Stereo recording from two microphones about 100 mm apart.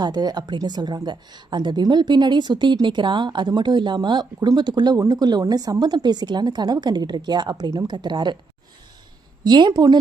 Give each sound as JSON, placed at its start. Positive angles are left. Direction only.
{"t": 0.0, "sound": "a woman's voice", "side_deg": -45}
{"t": 9.4, "sound": "a woman's voice", "side_deg": -50}